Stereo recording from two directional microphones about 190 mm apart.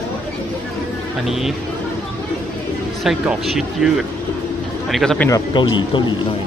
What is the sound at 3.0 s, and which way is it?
Speech, centre (ahead or behind).